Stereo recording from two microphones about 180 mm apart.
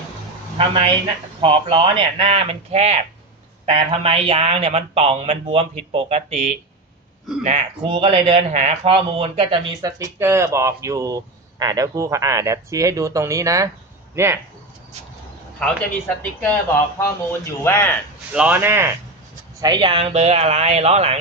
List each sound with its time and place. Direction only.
1.4 s a man's voice: 30° right (ahead or behind)
15.6 s speech: 5° left (ahead or behind)
18.3 s speech: 10° right (ahead or behind)
19.6 s a man's voice: 25° right (ahead or behind)